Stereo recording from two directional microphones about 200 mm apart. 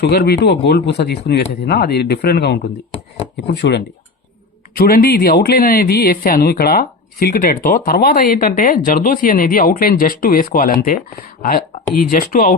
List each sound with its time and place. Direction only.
0.0 s speech: 55° left (ahead or behind)
4.7 s speech: 45° left (ahead or behind)